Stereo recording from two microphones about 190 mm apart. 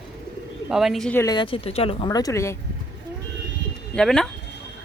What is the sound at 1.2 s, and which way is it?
Speech, 20° left (ahead or behind).